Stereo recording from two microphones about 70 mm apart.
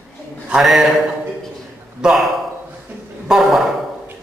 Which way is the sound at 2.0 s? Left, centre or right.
Centre.